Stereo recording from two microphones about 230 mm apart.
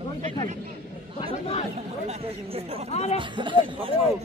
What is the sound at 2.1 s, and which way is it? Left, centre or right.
Speech, right.